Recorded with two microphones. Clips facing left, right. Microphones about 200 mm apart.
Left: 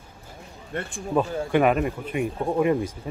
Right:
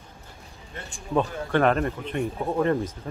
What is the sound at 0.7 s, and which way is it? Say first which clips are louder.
Speech: left 9 dB; 55° left (ahead or behind).